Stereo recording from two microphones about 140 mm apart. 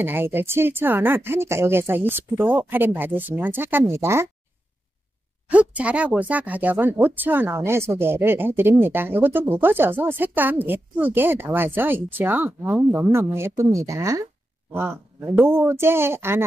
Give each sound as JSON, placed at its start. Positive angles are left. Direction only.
{"t": 0.0, "sound": "speech", "side_deg": -15}
{"t": 5.5, "sound": "speech", "side_deg": -10}